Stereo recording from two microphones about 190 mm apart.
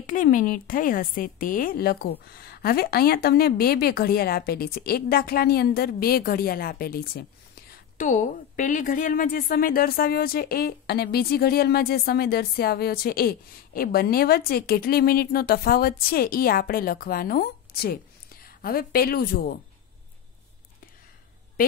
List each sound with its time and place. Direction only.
0.0 s a woman's voice: 45° left (ahead or behind)